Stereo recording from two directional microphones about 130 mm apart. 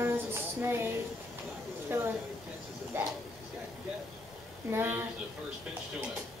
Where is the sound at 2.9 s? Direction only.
15° right (ahead or behind).